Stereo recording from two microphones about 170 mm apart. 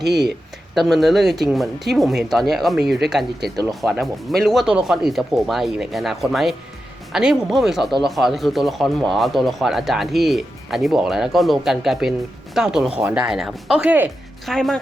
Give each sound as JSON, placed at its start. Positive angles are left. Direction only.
{"t": 0.7, "sound": "speech", "side_deg": 0}
{"t": 14.4, "sound": "speech", "side_deg": 0}